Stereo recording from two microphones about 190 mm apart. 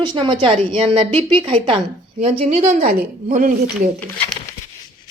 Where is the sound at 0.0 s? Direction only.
25° right (ahead or behind); by 3.7 s 45° right (ahead or behind).